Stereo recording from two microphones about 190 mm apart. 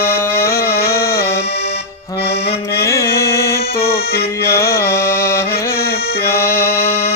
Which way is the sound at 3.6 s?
55° left (ahead or behind).